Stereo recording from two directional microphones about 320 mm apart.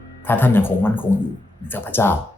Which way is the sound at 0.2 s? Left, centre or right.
Centre.